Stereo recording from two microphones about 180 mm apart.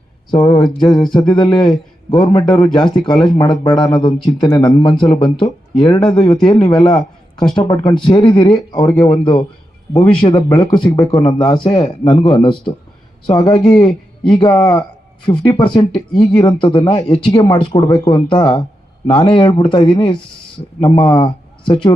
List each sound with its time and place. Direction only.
0.3 s speech: 20° left (ahead or behind)
9.9 s speech: 10° left (ahead or behind)
10.2 s speech: 25° left (ahead or behind)